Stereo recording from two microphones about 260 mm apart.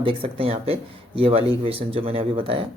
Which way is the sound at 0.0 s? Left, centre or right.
Right.